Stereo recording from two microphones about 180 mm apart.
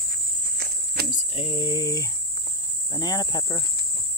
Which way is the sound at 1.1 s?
30° left (ahead or behind).